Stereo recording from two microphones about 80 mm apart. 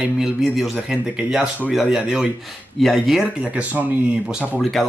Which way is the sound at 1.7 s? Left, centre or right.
Centre.